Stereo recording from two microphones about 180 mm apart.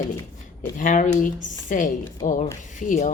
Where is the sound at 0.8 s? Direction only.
45° left (ahead or behind).